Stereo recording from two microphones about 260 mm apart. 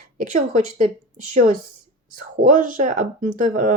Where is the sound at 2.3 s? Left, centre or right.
Right.